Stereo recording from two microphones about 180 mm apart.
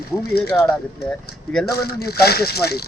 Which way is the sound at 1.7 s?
60° left (ahead or behind).